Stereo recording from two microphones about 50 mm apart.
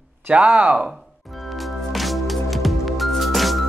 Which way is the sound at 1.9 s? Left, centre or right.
Centre.